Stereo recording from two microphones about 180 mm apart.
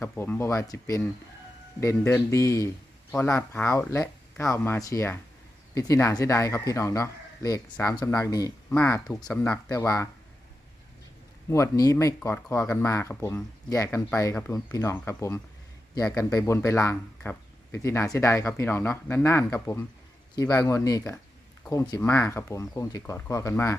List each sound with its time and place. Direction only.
0.0 s speech: 15° left (ahead or behind)
9.6 s speech: 20° left (ahead or behind)
11.4 s speech: 15° left (ahead or behind)